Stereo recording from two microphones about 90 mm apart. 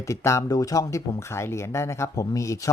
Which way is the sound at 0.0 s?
30° left (ahead or behind).